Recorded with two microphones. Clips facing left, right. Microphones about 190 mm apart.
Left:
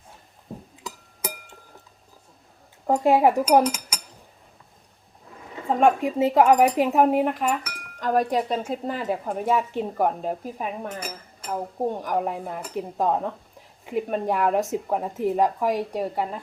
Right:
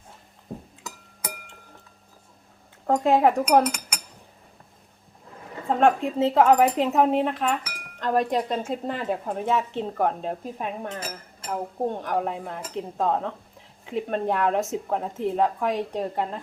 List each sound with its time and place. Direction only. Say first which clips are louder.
2.8 s speech: left 1 dB; 10° left (ahead or behind)
5.6 s speech: left 1 dB; 10° left (ahead or behind)